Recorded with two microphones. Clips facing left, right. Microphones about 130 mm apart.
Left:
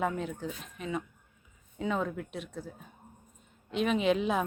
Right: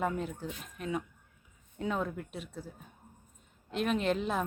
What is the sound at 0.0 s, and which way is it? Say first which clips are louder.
A woman's voice: left 1 dB; 5° right (ahead or behind).